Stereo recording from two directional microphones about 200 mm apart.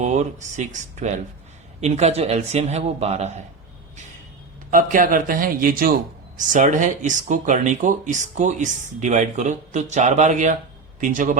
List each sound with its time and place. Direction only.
0.0 s speech: 35° right (ahead or behind)
4.7 s a man's voice: 40° right (ahead or behind)